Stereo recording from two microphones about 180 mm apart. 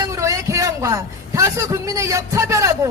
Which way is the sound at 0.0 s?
15° right (ahead or behind).